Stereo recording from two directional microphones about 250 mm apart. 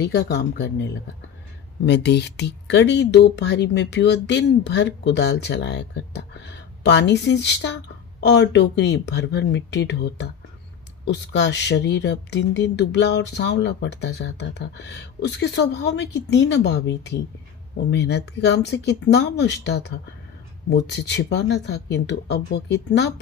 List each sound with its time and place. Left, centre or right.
0.0 s speech: left
1.9 s speech: left